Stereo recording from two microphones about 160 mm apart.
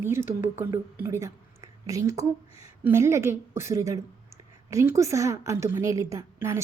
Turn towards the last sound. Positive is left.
turn(degrees=-20)  # may be behind; listen again after turning